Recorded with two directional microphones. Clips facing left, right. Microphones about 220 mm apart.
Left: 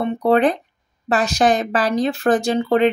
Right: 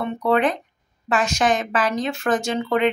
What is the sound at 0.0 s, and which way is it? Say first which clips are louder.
Speech: left 4 dB; 35° left (ahead or behind).